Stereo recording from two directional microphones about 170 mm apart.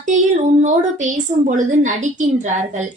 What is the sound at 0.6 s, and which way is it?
A woman's voice, 45° right (ahead or behind).